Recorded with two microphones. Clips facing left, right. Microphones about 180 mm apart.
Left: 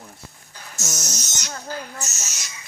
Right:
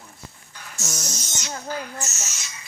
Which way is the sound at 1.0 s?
40° left (ahead or behind).